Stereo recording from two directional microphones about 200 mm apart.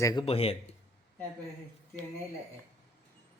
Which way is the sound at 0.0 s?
20° left (ahead or behind).